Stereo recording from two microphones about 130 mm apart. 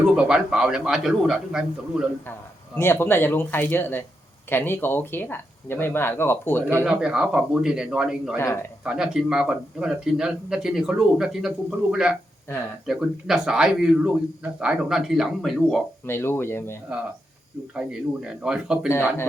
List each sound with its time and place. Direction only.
0.2 s speech: 5° right (ahead or behind)
2.7 s speech: 20° left (ahead or behind)
6.8 s speech: 5° right (ahead or behind)
16.0 s speech: 20° left (ahead or behind)
17.7 s speech: 5° right (ahead or behind)